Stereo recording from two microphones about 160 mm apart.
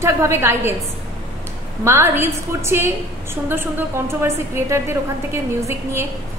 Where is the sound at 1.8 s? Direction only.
15° right (ahead or behind).